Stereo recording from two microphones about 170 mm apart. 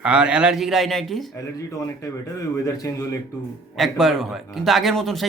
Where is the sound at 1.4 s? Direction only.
20° left (ahead or behind).